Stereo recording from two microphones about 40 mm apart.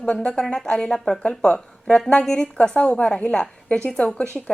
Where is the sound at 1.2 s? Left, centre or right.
Left.